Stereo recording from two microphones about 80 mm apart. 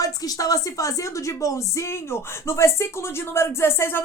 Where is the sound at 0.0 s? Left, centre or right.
Left.